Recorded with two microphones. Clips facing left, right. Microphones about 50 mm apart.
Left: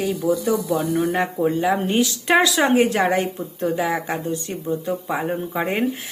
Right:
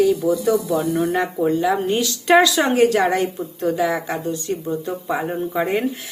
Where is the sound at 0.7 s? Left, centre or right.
Centre.